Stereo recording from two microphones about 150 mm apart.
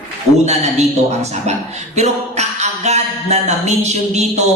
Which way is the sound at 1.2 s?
45° right (ahead or behind).